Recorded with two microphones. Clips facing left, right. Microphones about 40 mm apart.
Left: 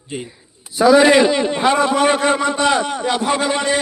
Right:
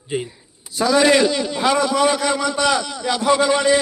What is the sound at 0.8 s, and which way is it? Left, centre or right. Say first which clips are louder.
A man's voice: left 4 dB; centre.